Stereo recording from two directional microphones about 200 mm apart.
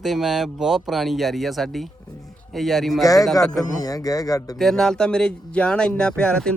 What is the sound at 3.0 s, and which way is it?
Speech, 15° left (ahead or behind).